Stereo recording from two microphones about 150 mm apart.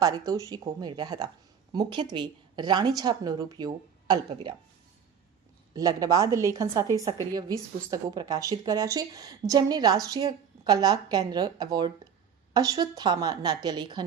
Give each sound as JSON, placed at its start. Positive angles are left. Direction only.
{"t": 0.0, "sound": "a woman's voice", "side_deg": -25}
{"t": 5.7, "sound": "a woman's voice", "side_deg": -25}